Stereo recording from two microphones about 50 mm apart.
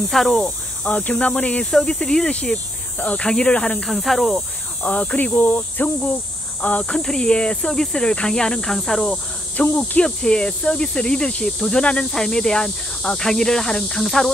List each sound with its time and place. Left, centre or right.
0.1 s speech: centre
0.8 s speech: left
1.7 s speech: centre
3.9 s speech: centre
4.8 s cricket: left
6.6 s speech: left
7.0 s speech: centre
9.6 s cricket: left
10.0 s speech: centre